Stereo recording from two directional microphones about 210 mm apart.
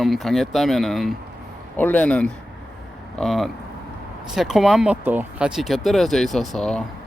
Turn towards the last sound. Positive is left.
turn(degrees=5)  # may be behind; listen again after turning